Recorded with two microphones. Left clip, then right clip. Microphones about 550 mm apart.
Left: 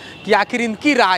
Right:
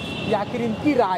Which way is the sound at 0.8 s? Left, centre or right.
Left.